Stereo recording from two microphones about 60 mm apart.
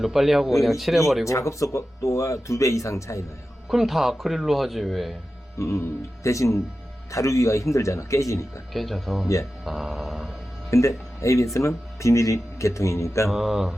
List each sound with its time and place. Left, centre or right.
0.0 s a man's voice: centre
1.3 s speech: left
3.7 s a man's voice: centre
5.5 s speech: left
8.7 s a man's voice: centre
10.7 s speech: left
13.3 s a man's voice: centre